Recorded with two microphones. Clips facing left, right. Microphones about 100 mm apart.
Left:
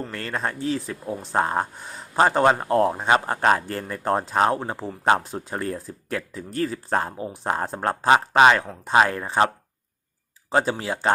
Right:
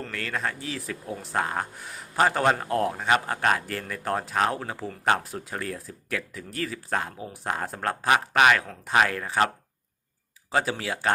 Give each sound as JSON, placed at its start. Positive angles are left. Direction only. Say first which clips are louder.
{"t": 0.1, "sound": "speech", "louder": "left 2 dB", "side_deg": 30}
{"t": 10.5, "sound": "speech", "louder": "left 4 dB", "side_deg": 30}